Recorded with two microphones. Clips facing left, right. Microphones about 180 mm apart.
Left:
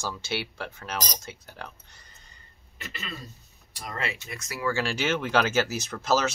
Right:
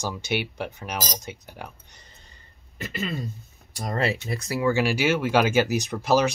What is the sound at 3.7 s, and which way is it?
Speech, 40° right (ahead or behind).